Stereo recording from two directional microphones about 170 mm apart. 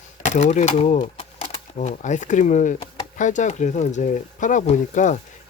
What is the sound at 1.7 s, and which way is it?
Speech, 45° left (ahead or behind).